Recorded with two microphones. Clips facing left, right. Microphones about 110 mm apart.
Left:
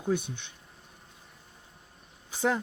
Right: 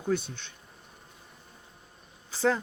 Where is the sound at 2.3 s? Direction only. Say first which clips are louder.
Right 2 dB; 20° left (ahead or behind).